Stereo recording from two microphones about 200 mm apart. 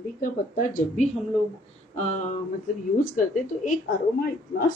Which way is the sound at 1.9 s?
40° left (ahead or behind).